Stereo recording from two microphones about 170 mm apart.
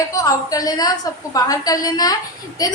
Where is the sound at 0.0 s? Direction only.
20° left (ahead or behind).